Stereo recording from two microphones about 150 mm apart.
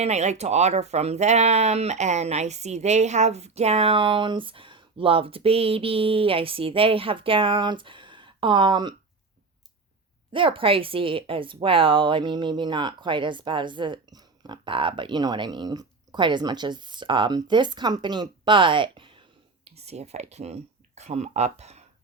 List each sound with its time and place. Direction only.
0.0 s speech: 50° right (ahead or behind); by 9.0 s 30° right (ahead or behind)
10.3 s speech: 35° right (ahead or behind)